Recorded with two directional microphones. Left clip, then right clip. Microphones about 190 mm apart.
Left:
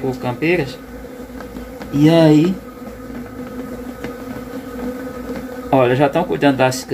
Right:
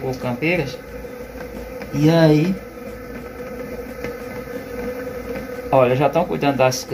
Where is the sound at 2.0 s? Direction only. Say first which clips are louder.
Left 3 dB; 40° left (ahead or behind).